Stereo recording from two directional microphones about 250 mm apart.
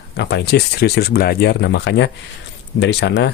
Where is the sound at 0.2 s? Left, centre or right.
Left.